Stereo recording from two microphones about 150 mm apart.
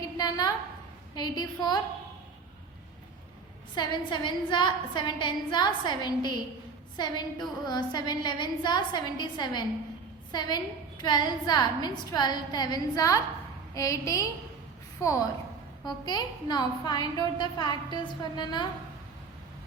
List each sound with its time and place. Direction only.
0.2 s a sound: 25° left (ahead or behind)
1.1 s a woman's voice: 25° left (ahead or behind)
3.8 s a woman's voice: 30° left (ahead or behind)
15.9 s a woman's voice: 25° left (ahead or behind)